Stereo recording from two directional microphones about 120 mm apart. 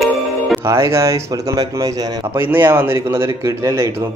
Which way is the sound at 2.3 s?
15° right (ahead or behind).